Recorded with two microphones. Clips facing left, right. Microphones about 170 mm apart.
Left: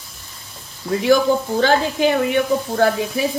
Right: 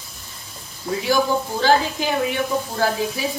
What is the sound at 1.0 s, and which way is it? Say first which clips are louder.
Speech: left 5 dB; 60° left (ahead or behind).